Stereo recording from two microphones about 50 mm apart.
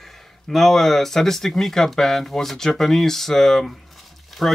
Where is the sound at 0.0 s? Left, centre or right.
Centre.